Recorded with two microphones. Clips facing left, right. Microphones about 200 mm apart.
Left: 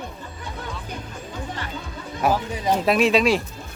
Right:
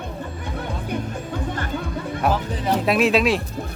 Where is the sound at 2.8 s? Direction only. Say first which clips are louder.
Even; centre (ahead or behind).